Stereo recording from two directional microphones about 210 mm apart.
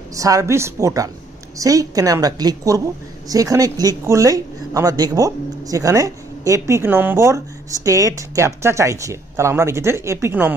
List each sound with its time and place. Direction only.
0.1 s a woman's voice: 15° right (ahead or behind)